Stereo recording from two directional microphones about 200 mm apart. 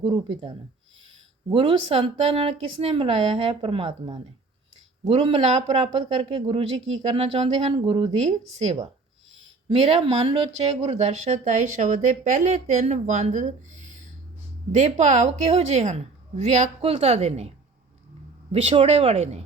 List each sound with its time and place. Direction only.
0.0 s speech: 20° right (ahead or behind)
18.5 s speech: 30° right (ahead or behind)